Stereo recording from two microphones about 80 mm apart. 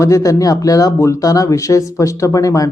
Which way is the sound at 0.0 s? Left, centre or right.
Left.